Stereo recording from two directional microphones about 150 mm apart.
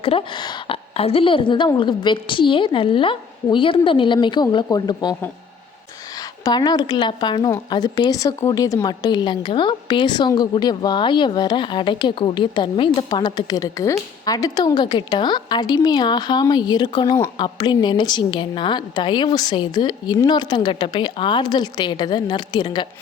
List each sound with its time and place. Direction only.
0.0 s a woman's voice: 35° left (ahead or behind)
6.4 s a woman's voice: 30° left (ahead or behind)